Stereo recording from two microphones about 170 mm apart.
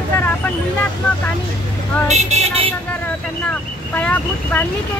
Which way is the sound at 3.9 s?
10° left (ahead or behind).